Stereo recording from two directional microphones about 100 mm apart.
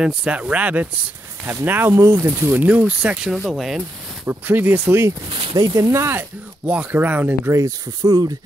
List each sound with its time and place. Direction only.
0.0 s speech: 10° right (ahead or behind)
4.3 s speech: 20° right (ahead or behind)
5.3 s a sound: 50° right (ahead or behind)
5.6 s speech: 35° right (ahead or behind); by 7.5 s 20° right (ahead or behind)
7.5 s speech: 35° right (ahead or behind)